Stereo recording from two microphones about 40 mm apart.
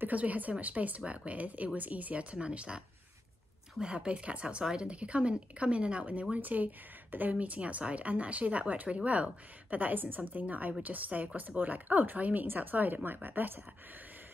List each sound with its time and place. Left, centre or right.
0.1 s speech: right
2.3 s speech: right
3.8 s speech: right
6.3 s speech: right
10.8 s speech: right